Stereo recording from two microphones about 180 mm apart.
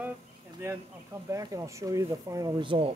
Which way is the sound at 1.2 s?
15° right (ahead or behind).